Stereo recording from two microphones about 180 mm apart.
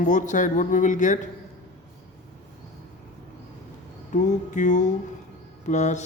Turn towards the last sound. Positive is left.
turn(degrees=40)  # may be behind; listen again after turning